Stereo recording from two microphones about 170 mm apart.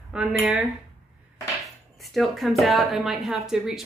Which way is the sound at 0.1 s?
10° right (ahead or behind).